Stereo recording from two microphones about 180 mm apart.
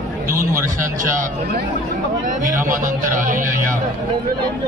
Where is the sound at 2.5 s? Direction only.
45° right (ahead or behind).